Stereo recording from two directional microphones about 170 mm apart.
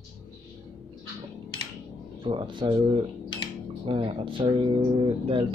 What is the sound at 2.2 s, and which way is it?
Speech, 30° right (ahead or behind).